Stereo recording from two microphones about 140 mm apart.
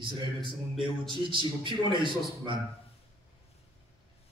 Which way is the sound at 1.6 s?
35° right (ahead or behind).